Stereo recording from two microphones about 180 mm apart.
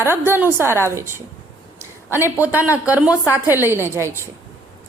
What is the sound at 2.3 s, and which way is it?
A woman's voice, 10° right (ahead or behind).